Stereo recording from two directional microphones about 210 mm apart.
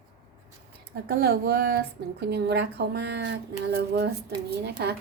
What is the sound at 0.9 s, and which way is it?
A woman's voice, 45° right (ahead or behind).